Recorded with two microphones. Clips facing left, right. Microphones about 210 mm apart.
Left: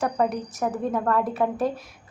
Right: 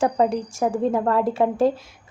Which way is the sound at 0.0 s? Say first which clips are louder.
Right 4 dB; 25° right (ahead or behind).